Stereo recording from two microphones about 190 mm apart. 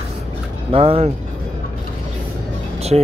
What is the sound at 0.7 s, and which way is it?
Speech, 30° right (ahead or behind).